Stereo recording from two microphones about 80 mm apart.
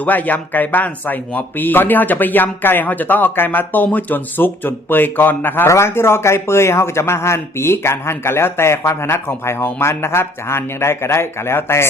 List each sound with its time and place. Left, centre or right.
0.0 s a man's voice: left